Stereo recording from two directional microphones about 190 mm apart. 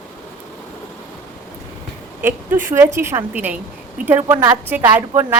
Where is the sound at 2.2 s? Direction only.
10° right (ahead or behind).